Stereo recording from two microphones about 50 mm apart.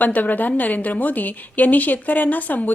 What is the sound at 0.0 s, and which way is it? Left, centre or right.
A woman's voice, left.